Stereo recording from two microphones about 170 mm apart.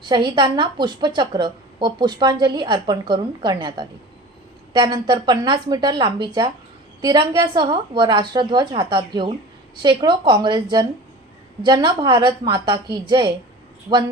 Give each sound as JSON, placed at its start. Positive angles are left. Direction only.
{"t": 0.0, "sound": "a woman's voice", "side_deg": -25}